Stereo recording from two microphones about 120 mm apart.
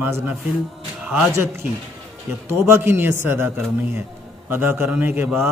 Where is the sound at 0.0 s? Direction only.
15° right (ahead or behind).